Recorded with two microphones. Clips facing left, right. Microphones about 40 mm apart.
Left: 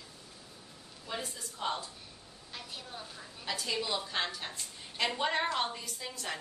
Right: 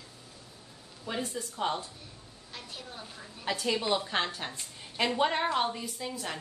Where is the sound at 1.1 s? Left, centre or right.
Centre.